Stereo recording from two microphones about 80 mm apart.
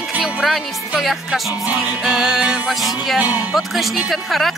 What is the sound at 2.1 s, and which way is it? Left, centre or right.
Music, centre.